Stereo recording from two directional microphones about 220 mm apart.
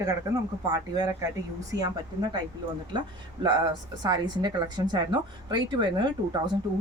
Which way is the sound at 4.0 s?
20° right (ahead or behind).